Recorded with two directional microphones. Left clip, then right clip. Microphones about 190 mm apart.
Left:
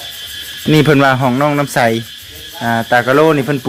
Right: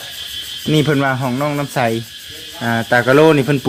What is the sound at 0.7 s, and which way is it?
Speech, 30° left (ahead or behind).